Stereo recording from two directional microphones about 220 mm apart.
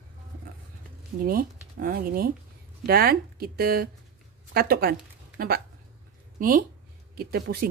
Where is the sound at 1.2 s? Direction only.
40° right (ahead or behind).